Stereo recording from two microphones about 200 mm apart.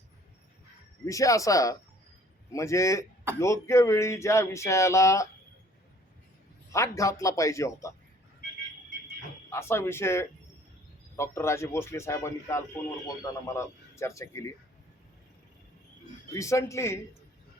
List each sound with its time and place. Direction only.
1.0 s speech: 15° left (ahead or behind)
6.7 s speech: 15° left (ahead or behind)
9.5 s speech: 15° left (ahead or behind)
16.3 s speech: 15° left (ahead or behind)